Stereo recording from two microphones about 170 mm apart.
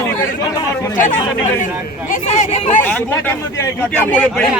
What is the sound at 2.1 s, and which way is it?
Speech, 45° left (ahead or behind).